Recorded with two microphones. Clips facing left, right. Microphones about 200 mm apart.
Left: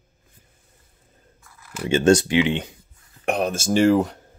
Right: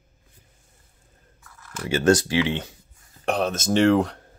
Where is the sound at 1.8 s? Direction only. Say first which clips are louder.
Left 3 dB; 20° left (ahead or behind).